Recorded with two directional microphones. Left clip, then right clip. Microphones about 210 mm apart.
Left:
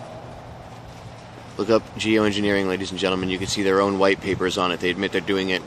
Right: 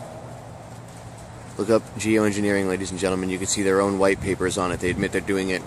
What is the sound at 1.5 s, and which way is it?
Speech, 5° right (ahead or behind).